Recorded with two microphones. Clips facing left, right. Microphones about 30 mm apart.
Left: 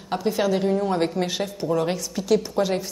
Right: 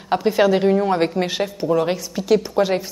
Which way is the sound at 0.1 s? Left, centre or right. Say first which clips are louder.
Right 6 dB; right.